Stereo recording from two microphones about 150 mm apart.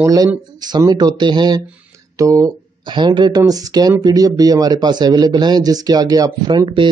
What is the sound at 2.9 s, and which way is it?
Speech, 30° right (ahead or behind).